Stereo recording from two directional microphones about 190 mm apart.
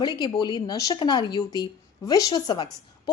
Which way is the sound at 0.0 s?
20° left (ahead or behind).